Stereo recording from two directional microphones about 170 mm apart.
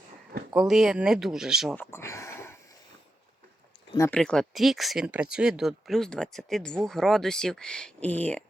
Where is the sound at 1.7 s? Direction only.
15° left (ahead or behind).